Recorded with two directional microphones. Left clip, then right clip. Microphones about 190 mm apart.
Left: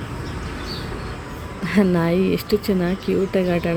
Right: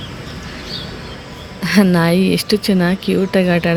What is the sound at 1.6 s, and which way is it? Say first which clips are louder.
Speech: right 5 dB; centre (ahead or behind).